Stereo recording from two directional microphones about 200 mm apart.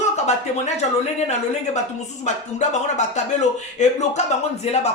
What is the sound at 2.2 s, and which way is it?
Speech, 35° left (ahead or behind).